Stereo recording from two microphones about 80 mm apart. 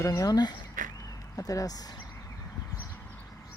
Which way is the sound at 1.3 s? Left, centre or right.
Left.